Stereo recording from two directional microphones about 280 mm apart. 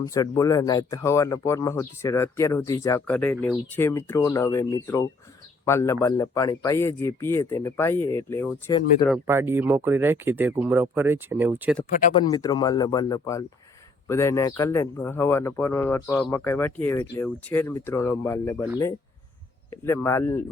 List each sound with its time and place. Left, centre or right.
0.0 s speech: centre
9.0 s speech: centre
11.9 s speech: left
12.1 s speech: centre
19.8 s speech: centre